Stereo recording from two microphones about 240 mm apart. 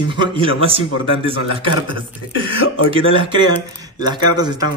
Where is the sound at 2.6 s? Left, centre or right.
Left.